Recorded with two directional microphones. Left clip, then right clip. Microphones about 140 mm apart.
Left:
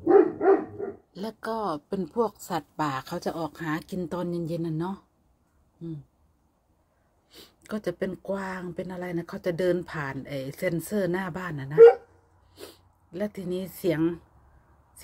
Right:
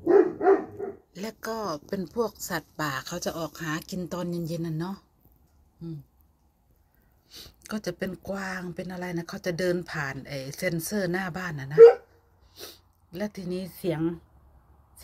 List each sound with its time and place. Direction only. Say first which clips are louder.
0.0 s dog: left 1 dB; 5° left (ahead or behind)
1.4 s speech: left 2 dB; 15° left (ahead or behind)
7.2 s speech: even; 25° left (ahead or behind)